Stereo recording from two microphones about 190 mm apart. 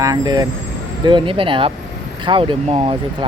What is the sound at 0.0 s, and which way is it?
Speech, 20° right (ahead or behind).